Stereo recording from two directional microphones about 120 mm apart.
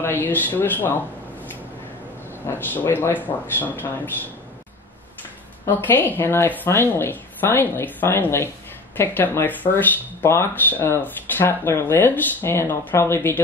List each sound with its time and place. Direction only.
0.0 s a woman's voice: 15° left (ahead or behind)
2.4 s a woman's voice: 15° left (ahead or behind)
5.7 s a woman's voice: 15° left (ahead or behind)